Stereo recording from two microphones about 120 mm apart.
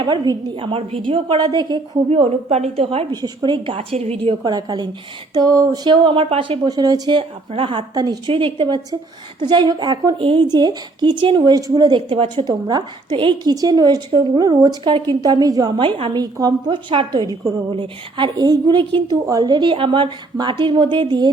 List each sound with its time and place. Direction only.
0.0 s a woman's voice: 45° right (ahead or behind)
2.0 s a woman's voice: 60° right (ahead or behind)
3.1 s a woman's voice: 35° right (ahead or behind)
3.9 s a woman's voice: 60° right (ahead or behind)
4.4 s a woman's voice: 35° right (ahead or behind)
6.7 s a woman's voice: 30° right (ahead or behind)
7.2 s a woman's voice: 50° right (ahead or behind)
8.3 s a woman's voice: 50° right (ahead or behind)
10.2 s a woman's voice: 45° right (ahead or behind)
13.5 s a woman's voice: 30° right (ahead or behind)
15.8 s a woman's voice: 50° right (ahead or behind)
16.1 s a woman's voice: 30° right (ahead or behind)